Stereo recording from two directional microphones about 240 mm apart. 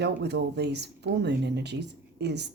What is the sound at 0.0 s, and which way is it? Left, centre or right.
Speech, right.